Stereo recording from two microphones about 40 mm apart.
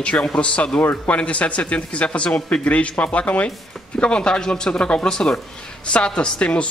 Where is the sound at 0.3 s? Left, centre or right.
Left.